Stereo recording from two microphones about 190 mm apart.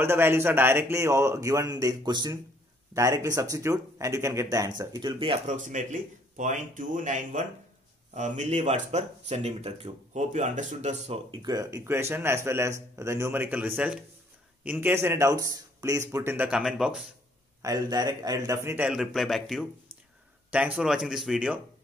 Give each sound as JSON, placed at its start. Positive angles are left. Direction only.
{"t": 0.0, "sound": "speech", "side_deg": -15}
{"t": 5.6, "sound": "speech", "side_deg": -40}
{"t": 11.4, "sound": "speech", "side_deg": -20}
{"t": 17.6, "sound": "speech", "side_deg": -20}